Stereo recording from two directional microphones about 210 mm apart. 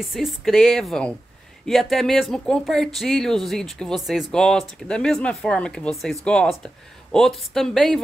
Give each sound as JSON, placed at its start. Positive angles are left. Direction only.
{"t": 0.0, "sound": "speech", "side_deg": 0}